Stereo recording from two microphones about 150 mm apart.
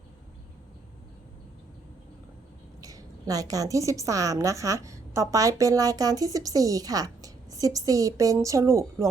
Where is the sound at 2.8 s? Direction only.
25° right (ahead or behind).